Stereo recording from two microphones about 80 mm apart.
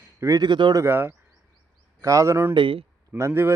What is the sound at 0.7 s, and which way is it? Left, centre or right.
Speech, right.